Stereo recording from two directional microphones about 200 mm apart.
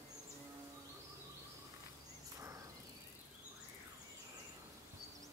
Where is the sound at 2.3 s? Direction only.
15° right (ahead or behind).